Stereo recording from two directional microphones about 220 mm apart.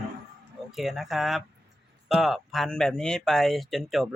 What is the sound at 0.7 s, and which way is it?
Speech, centre (ahead or behind).